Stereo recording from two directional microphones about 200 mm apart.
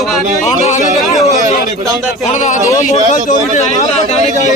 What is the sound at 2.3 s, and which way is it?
Speech, 35° left (ahead or behind).